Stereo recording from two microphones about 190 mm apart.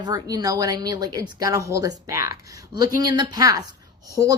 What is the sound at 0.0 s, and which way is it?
A woman's voice, 20° right (ahead or behind).